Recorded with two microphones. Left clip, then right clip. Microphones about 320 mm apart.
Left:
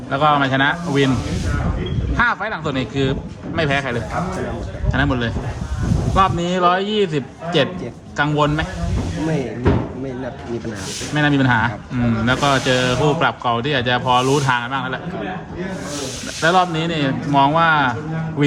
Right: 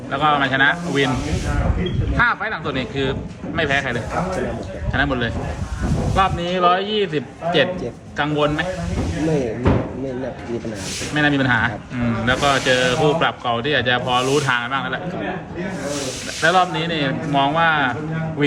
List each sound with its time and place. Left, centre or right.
0.1 s speech: left
2.1 s speech: left
11.1 s speech: left
16.4 s speech: left